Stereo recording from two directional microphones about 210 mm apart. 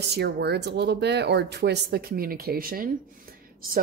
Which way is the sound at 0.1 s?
50° right (ahead or behind).